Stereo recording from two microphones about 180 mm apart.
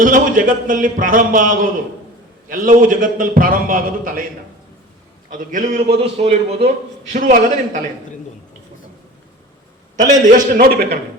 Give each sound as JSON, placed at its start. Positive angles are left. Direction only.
{"t": 0.0, "sound": "a man's voice", "side_deg": -50}
{"t": 5.3, "sound": "a man's voice", "side_deg": -50}
{"t": 5.9, "sound": "a man's voice", "side_deg": -35}
{"t": 10.0, "sound": "a man's voice", "side_deg": -45}